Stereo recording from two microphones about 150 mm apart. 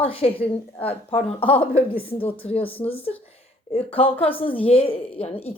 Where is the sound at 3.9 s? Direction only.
40° left (ahead or behind).